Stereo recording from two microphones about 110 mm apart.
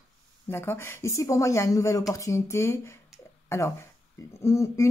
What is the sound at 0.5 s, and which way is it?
Speech, 20° left (ahead or behind).